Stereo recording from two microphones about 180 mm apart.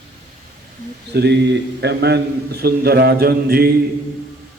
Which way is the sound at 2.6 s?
60° right (ahead or behind).